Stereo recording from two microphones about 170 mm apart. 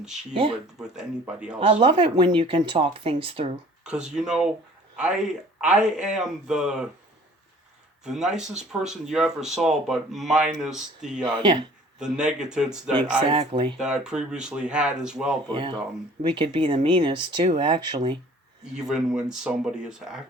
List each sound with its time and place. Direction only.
0.3 s speech: 30° right (ahead or behind)
0.8 s speech: 5° right (ahead or behind)
1.5 s speech: 35° right (ahead or behind)
3.8 s speech: 5° right (ahead or behind)
5.5 s speech: 5° right (ahead or behind)
8.0 s speech: 5° right (ahead or behind)
13.1 s speech: 35° right (ahead or behind)
13.7 s speech: 5° right (ahead or behind)
15.4 s speech: 25° right (ahead or behind)
18.6 s speech: 5° right (ahead or behind)